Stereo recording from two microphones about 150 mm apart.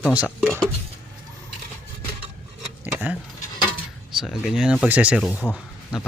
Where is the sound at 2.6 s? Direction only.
10° right (ahead or behind).